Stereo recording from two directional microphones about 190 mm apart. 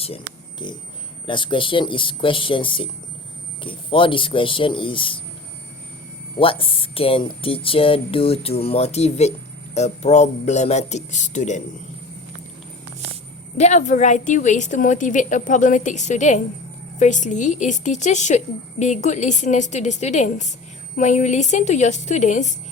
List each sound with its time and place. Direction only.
0.6 s speech: 25° left (ahead or behind)
6.4 s a woman's voice: 30° left (ahead or behind)
13.6 s a woman's voice: 35° left (ahead or behind)